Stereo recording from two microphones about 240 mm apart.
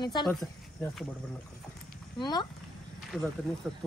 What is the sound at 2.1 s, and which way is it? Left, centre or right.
Speech, centre.